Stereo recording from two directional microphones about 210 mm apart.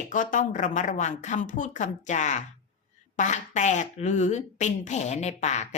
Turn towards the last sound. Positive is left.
turn(degrees=35)  # may be behind; listen again after turning